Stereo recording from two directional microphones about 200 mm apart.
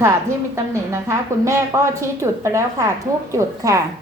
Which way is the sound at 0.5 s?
15° right (ahead or behind).